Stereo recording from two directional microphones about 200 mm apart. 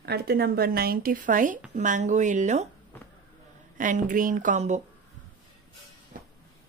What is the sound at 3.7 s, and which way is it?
Speech, 40° right (ahead or behind).